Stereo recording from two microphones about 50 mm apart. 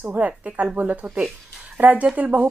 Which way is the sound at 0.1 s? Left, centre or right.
Right.